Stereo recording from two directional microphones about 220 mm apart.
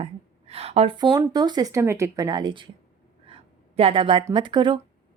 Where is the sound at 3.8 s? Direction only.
25° right (ahead or behind).